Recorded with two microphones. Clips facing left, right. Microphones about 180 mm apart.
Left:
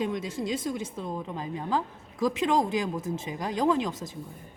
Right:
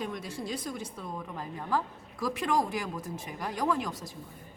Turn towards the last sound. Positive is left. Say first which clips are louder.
# left 5 dB
turn(degrees=20)  # may be behind; listen again after turning